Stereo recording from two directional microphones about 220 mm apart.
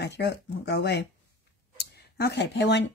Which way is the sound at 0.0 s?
50° left (ahead or behind).